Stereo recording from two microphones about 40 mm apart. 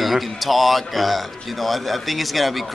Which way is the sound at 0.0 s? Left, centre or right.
Centre.